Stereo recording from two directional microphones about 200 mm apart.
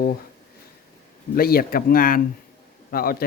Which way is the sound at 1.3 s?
45° left (ahead or behind).